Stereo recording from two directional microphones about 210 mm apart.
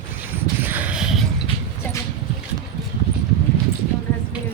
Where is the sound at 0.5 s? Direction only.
10° right (ahead or behind).